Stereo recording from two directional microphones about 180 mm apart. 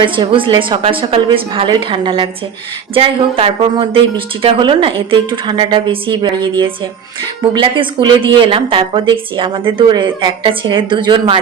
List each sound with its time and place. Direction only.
0.0 s a woman's voice: 30° right (ahead or behind)